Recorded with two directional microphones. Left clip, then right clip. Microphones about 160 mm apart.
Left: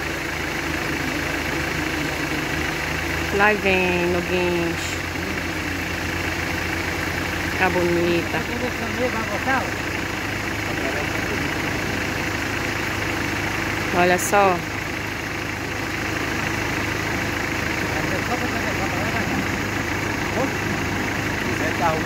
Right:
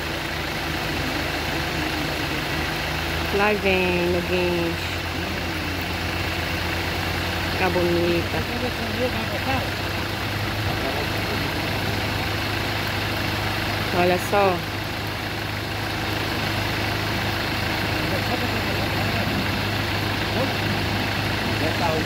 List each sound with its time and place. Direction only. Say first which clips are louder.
3.3 s speech: left 3 dB; 5° right (ahead or behind)
14.0 s speech: left 3 dB; centre (ahead or behind)